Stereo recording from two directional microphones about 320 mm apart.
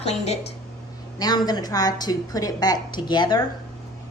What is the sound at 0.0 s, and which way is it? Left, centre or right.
A woman's voice, centre.